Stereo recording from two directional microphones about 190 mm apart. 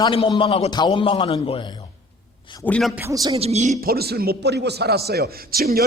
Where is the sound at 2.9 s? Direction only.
15° right (ahead or behind).